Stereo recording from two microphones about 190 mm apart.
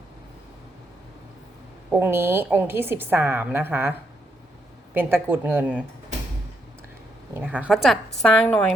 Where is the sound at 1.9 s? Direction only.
10° right (ahead or behind).